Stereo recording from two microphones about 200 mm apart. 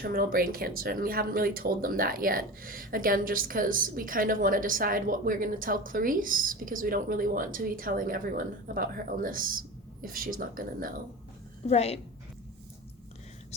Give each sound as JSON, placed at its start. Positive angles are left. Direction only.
{"t": 0.0, "sound": "speech", "side_deg": -45}
{"t": 11.7, "sound": "a woman's voice", "side_deg": 30}